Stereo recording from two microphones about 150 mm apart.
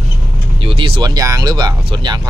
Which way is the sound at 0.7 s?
35° right (ahead or behind).